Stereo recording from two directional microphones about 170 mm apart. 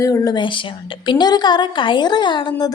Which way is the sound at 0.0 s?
20° left (ahead or behind).